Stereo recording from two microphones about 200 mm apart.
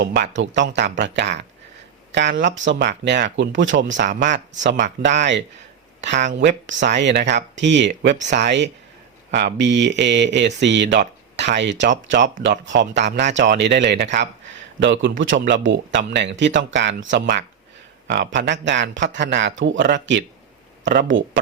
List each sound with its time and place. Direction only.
0.0 s speech: 60° right (ahead or behind)